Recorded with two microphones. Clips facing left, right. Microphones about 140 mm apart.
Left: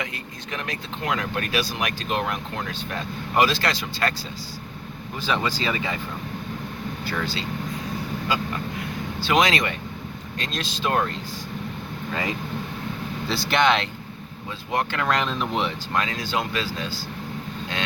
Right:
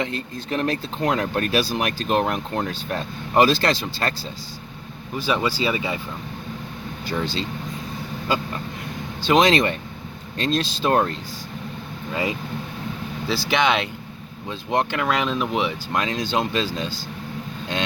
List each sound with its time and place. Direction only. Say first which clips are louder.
0.0 s speech: right 6 dB; 30° right (ahead or behind)
5.2 s speech: right 3 dB; 15° right (ahead or behind)
7.1 s speech: right 4 dB; 25° right (ahead or behind)
9.2 s speech: right 4 dB; 25° right (ahead or behind)
13.2 s speech: even; centre (ahead or behind)
14.7 s speech: right 3 dB; 20° right (ahead or behind)
15.0 s speech: right 2 dB; 5° right (ahead or behind)
15.9 s speech: right 2 dB; 20° right (ahead or behind)